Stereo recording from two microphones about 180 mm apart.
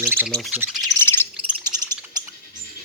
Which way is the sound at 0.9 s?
15° left (ahead or behind).